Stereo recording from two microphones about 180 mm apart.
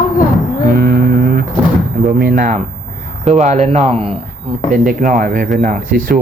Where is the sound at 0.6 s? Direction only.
55° right (ahead or behind).